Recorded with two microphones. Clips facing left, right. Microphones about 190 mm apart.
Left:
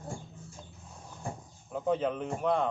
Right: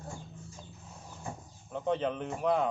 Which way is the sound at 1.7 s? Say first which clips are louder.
Left 2 dB; 5° left (ahead or behind).